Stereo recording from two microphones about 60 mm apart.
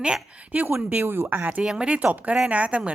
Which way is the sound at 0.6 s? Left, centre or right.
Right.